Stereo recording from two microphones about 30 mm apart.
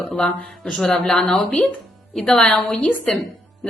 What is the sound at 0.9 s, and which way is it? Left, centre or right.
Speech, centre.